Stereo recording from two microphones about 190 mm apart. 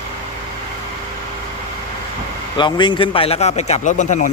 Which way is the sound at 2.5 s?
25° left (ahead or behind).